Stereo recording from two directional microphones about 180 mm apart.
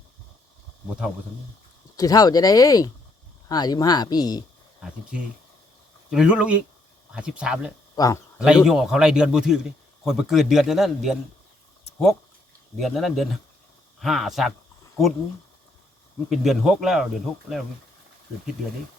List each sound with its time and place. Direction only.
2.0 s speech: 20° left (ahead or behind)
6.1 s a man's voice: 5° right (ahead or behind)
7.9 s speech: 20° left (ahead or behind)
8.4 s a man's voice: 5° right (ahead or behind)
12.7 s a man's voice: centre (ahead or behind)
16.3 s a man's voice: centre (ahead or behind)